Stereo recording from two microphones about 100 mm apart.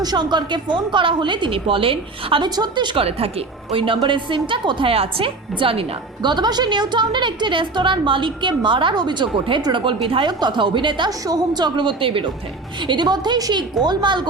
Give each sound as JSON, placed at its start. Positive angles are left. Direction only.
{"t": 0.0, "sound": "a woman's voice", "side_deg": -45}
{"t": 3.0, "sound": "a woman's voice", "side_deg": -80}
{"t": 6.2, "sound": "a woman's voice", "side_deg": -45}
{"t": 12.8, "sound": "a woman's voice", "side_deg": -50}